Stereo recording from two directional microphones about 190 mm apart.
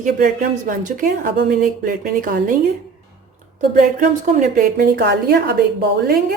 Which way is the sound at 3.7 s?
40° right (ahead or behind).